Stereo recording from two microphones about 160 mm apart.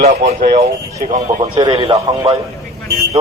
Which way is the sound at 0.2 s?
65° right (ahead or behind).